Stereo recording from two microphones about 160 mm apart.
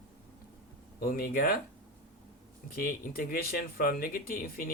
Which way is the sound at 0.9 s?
70° left (ahead or behind).